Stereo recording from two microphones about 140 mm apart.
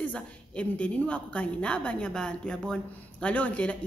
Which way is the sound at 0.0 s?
10° left (ahead or behind).